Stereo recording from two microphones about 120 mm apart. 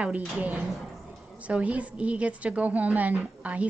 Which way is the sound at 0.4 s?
10° right (ahead or behind).